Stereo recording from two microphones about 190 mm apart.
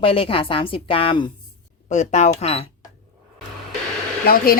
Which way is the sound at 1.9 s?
40° left (ahead or behind).